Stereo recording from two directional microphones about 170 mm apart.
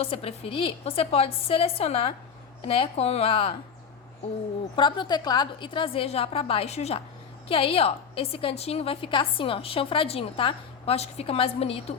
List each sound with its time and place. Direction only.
0.0 s a woman's voice: 35° left (ahead or behind)
4.8 s a woman's voice: 25° left (ahead or behind)